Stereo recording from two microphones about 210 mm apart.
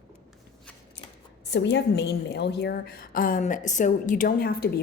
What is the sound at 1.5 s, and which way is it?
A woman's voice, 55° left (ahead or behind).